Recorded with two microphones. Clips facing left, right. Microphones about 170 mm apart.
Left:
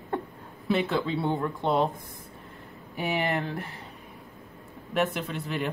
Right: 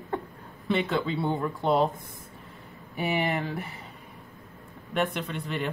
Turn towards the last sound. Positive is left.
turn(degrees=0)  # may be behind; listen again after turning